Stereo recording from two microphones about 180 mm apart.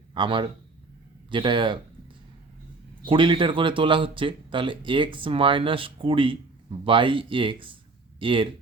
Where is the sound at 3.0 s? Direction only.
30° right (ahead or behind).